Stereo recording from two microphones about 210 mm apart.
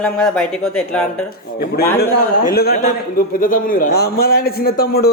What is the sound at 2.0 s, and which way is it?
Speech, 45° left (ahead or behind).